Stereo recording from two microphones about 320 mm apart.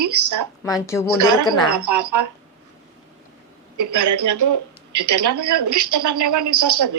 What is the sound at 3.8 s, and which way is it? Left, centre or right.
A woman's voice, right.